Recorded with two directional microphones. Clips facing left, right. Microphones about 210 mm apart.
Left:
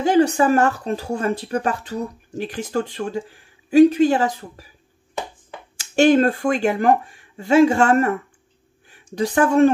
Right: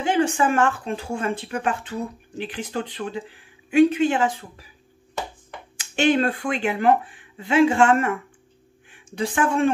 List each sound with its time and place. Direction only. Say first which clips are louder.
0.0 s speech: left 5 dB; 40° left (ahead or behind)
5.8 s speech: left 5 dB; 40° left (ahead or behind)